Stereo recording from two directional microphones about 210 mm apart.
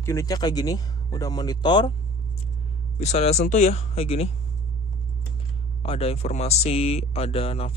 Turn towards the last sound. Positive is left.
turn(degrees=25)  # may be behind; listen again after turning